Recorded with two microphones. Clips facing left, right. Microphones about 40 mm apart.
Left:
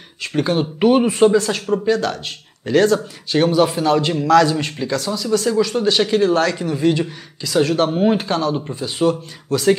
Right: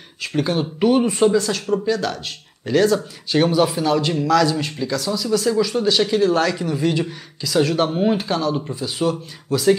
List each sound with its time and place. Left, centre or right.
0.2 s speech: centre
5.9 s speech: centre
6.3 s speech: centre
9.5 s speech: centre